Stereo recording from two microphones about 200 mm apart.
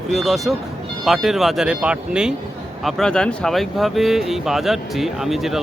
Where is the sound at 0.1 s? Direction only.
Centre (ahead or behind).